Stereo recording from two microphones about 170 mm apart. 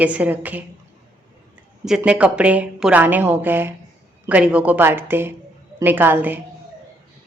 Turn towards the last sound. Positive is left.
turn(degrees=-10)  # may be behind; listen again after turning